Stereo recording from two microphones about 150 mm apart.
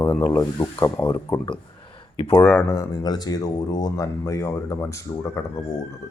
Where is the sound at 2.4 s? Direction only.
10° left (ahead or behind).